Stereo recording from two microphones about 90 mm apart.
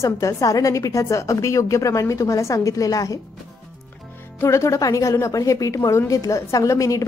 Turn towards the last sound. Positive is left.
turn(degrees=35)  # may be behind; listen again after turning